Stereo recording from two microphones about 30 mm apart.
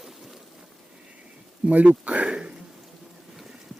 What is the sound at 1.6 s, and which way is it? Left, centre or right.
Speech, right.